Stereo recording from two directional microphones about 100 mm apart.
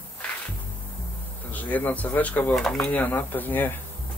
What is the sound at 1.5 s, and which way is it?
Speech, 15° left (ahead or behind).